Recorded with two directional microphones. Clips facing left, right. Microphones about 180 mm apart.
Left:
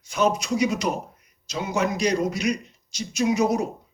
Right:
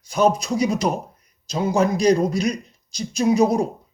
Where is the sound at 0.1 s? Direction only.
35° right (ahead or behind).